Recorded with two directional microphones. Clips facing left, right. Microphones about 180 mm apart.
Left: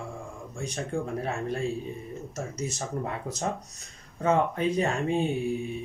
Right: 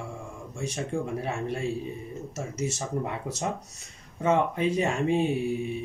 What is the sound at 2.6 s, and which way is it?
Speech, 25° right (ahead or behind).